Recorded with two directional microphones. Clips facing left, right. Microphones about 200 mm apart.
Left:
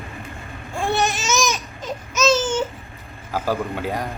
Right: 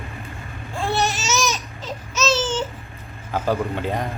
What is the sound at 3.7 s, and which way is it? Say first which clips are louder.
Speech: right 1 dB; 5° left (ahead or behind).